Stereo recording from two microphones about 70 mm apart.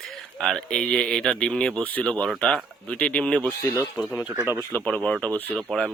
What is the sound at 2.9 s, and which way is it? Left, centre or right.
Speech, centre.